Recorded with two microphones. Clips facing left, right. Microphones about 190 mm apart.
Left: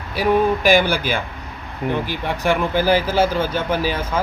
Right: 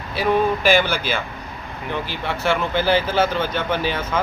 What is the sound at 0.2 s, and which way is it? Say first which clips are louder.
Speech: left 2 dB; 15° left (ahead or behind).